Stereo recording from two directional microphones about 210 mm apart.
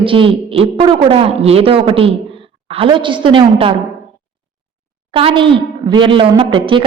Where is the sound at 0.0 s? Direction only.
25° right (ahead or behind).